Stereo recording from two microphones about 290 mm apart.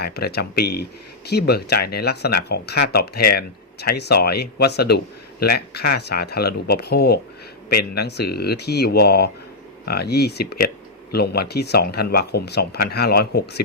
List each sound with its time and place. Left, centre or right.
0.0 s speech: left